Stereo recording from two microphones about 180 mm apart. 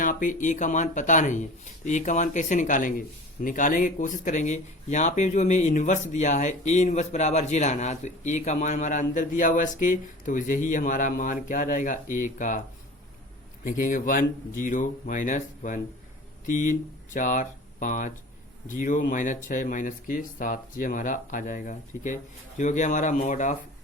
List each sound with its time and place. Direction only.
0.0 s speech: 50° left (ahead or behind)
13.7 s speech: 45° left (ahead or behind)